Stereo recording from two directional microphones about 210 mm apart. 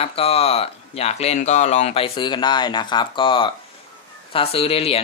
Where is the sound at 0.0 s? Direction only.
30° left (ahead or behind).